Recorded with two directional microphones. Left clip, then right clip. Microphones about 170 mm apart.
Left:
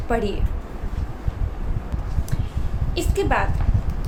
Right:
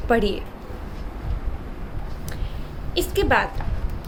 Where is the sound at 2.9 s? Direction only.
25° right (ahead or behind).